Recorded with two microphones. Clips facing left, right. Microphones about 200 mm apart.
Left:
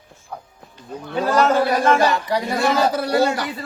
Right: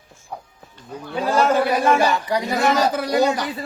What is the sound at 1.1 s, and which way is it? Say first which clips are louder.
A man's voice: left 1 dB; 15° right (ahead or behind).